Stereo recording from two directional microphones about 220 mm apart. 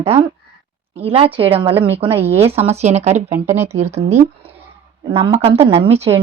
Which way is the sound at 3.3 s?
10° right (ahead or behind).